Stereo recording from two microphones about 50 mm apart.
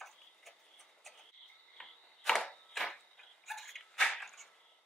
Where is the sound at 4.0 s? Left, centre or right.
Centre.